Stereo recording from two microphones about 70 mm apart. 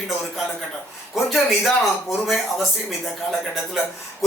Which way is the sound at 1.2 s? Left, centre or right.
Centre.